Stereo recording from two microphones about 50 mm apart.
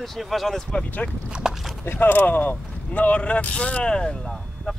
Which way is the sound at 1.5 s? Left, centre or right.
Centre.